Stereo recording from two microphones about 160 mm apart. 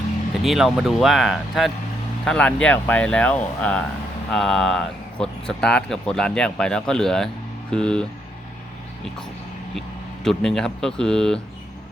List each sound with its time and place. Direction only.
0.4 s speech: centre (ahead or behind)
10.2 s speech: 5° left (ahead or behind)